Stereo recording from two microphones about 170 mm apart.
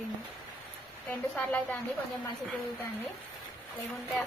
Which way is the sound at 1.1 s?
10° left (ahead or behind).